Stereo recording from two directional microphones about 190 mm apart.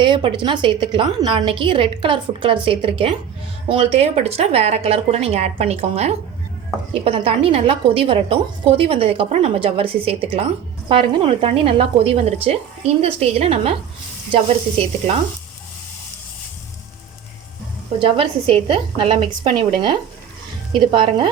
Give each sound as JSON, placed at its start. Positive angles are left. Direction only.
{"t": 0.0, "sound": "a woman's voice", "side_deg": -25}
{"t": 18.0, "sound": "a woman's voice", "side_deg": -30}